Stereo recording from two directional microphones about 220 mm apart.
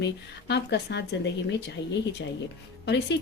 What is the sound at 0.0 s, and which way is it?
Speech, 50° left (ahead or behind).